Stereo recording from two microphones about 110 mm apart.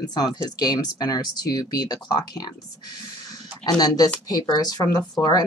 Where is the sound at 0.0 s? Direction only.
35° left (ahead or behind).